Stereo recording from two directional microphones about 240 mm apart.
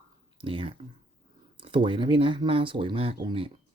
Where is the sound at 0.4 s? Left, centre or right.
Right.